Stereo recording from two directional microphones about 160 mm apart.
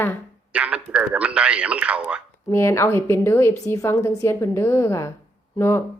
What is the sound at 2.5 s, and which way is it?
A woman's voice, 15° left (ahead or behind).